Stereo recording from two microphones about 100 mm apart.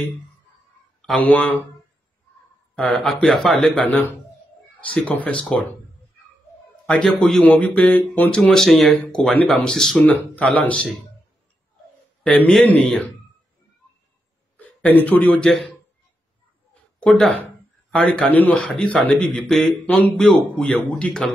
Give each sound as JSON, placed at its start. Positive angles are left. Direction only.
{"t": 1.1, "sound": "speech", "side_deg": 15}
{"t": 2.7, "sound": "speech", "side_deg": 5}
{"t": 3.8, "sound": "speech", "side_deg": 15}
{"t": 6.9, "sound": "speech", "side_deg": 10}
{"t": 8.4, "sound": "speech", "side_deg": 5}
{"t": 12.2, "sound": "speech", "side_deg": 10}
{"t": 14.6, "sound": "a sound", "side_deg": 15}
{"t": 15.4, "sound": "speech", "side_deg": 5}
{"t": 17.0, "sound": "speech", "side_deg": 10}